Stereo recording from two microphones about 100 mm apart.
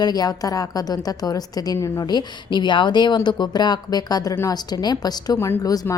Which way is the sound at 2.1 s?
45° left (ahead or behind).